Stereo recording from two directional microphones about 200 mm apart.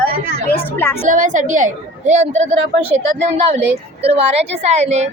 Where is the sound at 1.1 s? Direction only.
40° right (ahead or behind).